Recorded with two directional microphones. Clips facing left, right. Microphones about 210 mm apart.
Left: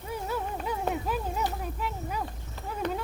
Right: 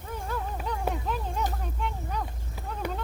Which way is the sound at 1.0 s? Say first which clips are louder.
Left 1 dB; 5° left (ahead or behind).